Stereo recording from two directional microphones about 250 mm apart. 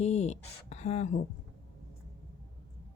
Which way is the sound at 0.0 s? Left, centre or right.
Left.